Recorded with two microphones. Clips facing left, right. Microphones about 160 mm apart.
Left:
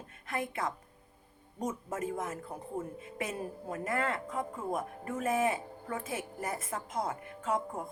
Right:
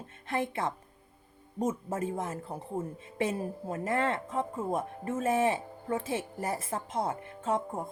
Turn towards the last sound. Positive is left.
turn(degrees=-30)  # may be behind; listen again after turning